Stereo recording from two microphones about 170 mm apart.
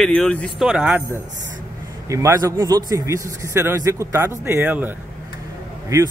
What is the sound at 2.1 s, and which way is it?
Speech, 20° right (ahead or behind).